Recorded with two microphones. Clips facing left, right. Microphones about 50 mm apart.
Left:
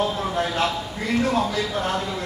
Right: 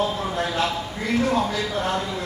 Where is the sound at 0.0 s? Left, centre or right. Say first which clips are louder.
Left 1 dB; centre.